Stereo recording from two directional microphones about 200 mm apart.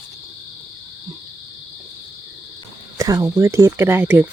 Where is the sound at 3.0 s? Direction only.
15° right (ahead or behind).